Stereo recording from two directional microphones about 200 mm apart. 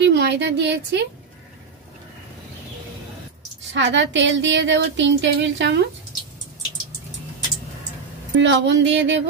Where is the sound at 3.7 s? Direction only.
65° right (ahead or behind).